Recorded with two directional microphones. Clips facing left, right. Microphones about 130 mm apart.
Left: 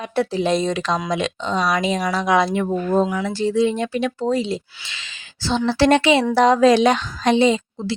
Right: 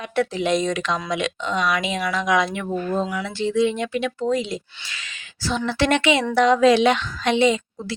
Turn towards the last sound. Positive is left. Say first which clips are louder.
# left 2 dB
turn(degrees=35)  # may be behind; listen again after turning